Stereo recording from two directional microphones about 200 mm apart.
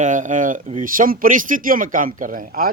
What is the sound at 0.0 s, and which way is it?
Speech, 40° right (ahead or behind).